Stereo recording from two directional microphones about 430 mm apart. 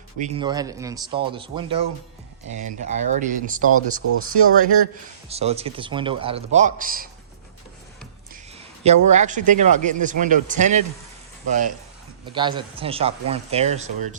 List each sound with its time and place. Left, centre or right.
0.2 s a man's voice: centre
3.8 s speech: right
5.3 s a man's voice: centre
8.8 s a man's voice: centre